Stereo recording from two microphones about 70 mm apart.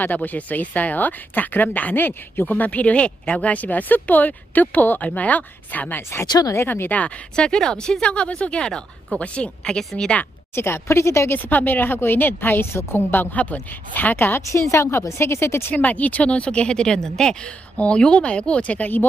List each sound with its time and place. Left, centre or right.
0.0 s speech: left
6.2 s speech: left
6.7 s speech: left
10.5 s a woman's voice: left
11.4 s a woman's voice: left
13.3 s speech: left
14.5 s a woman's voice: left
15.7 s speech: left